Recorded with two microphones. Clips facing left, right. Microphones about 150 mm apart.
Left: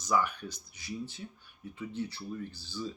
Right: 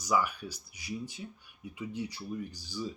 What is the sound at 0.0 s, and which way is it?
Speech, 10° right (ahead or behind).